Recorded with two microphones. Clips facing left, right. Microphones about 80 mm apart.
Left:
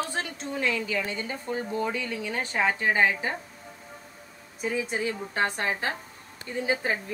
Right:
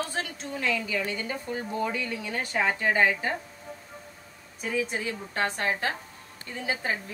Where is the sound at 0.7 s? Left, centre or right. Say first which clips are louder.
Even; left.